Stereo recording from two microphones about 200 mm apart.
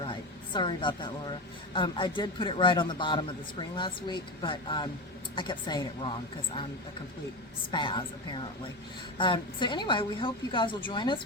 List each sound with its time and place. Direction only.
0.0 s a woman's voice: 25° left (ahead or behind)
7.7 s a woman's voice: 25° left (ahead or behind)